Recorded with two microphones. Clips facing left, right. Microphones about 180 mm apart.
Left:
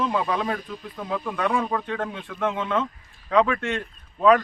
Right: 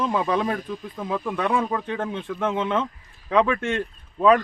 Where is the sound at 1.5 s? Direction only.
25° right (ahead or behind).